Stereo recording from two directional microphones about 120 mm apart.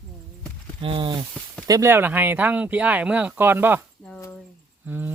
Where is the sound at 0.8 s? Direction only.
45° right (ahead or behind).